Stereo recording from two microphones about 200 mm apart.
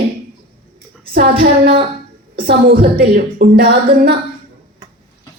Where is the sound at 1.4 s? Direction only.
55° right (ahead or behind).